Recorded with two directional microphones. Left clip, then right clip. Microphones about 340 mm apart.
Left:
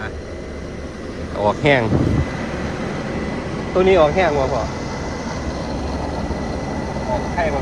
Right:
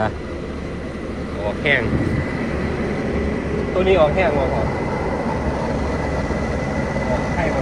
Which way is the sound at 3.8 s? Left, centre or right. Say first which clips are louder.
Left 2 dB; left.